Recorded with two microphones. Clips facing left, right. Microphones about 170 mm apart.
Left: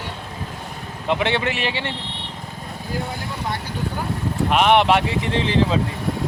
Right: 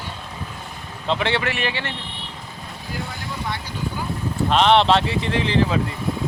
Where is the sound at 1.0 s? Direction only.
15° left (ahead or behind).